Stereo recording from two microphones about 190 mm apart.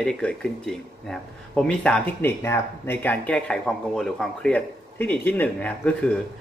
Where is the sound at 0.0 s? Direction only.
5° left (ahead or behind).